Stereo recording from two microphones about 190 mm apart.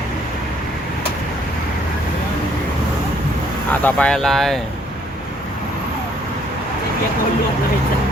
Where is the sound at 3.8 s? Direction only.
10° left (ahead or behind).